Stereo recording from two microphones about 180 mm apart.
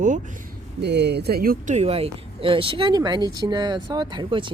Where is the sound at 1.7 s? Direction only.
35° right (ahead or behind).